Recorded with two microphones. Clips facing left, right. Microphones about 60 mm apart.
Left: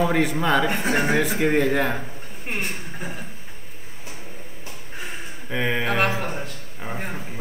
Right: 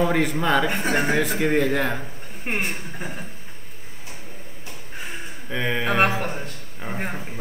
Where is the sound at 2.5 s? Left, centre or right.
Right.